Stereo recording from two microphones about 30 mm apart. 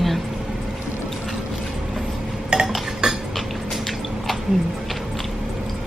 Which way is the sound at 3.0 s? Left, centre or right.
Right.